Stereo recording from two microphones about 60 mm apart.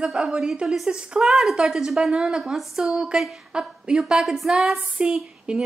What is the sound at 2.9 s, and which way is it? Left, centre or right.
A woman's voice, centre.